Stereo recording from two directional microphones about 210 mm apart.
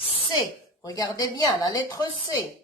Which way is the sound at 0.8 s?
20° left (ahead or behind).